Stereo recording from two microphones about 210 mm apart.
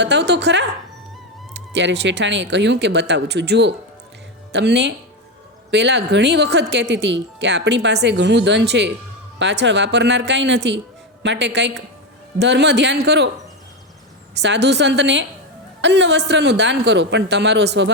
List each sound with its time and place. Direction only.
0.0 s speech: 55° right (ahead or behind)
14.3 s speech: 55° right (ahead or behind)